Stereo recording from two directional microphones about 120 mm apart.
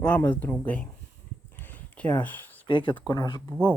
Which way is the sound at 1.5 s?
15° left (ahead or behind).